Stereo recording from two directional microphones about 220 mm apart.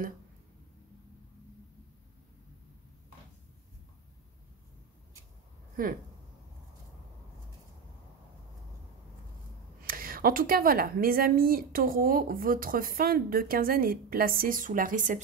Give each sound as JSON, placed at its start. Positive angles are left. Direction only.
{"t": 9.8, "sound": "speech", "side_deg": -40}